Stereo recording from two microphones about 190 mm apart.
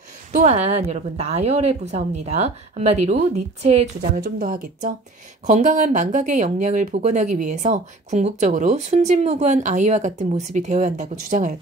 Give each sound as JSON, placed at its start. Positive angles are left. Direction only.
{"t": 0.3, "sound": "speech", "side_deg": -35}
{"t": 4.0, "sound": "speech", "side_deg": -45}